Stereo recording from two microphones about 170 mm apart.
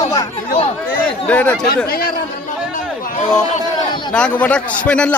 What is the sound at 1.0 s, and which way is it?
Speech, 10° left (ahead or behind).